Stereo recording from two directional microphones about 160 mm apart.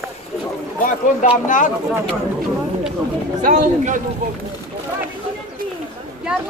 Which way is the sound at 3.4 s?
50° right (ahead or behind).